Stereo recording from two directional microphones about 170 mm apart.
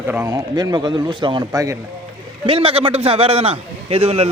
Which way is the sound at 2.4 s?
35° right (ahead or behind).